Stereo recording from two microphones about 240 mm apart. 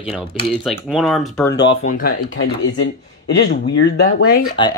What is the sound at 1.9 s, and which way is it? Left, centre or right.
Speech, left.